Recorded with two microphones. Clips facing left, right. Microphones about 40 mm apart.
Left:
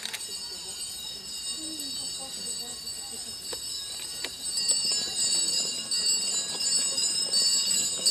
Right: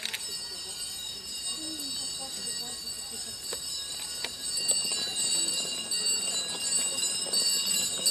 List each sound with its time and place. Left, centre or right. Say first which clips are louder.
4.8 s clip-clop: left 1 dB; right